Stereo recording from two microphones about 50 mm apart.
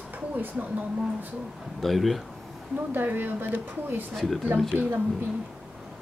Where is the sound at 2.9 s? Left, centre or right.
Right.